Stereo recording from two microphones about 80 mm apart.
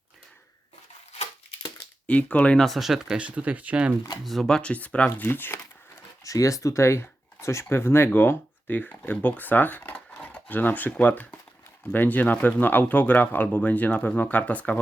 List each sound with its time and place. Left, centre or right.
2.0 s speech: centre
2.6 s speech: centre
3.2 s speech: centre
4.2 s speech: centre; by 5.5 s left
6.2 s speech: left; by 14.8 s centre